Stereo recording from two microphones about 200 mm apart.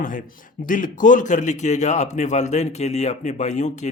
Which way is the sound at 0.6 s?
40° left (ahead or behind).